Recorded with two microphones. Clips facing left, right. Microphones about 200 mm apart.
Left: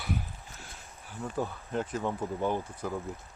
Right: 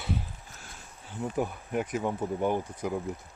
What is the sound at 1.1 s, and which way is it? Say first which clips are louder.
Speech: right 3 dB; 15° right (ahead or behind).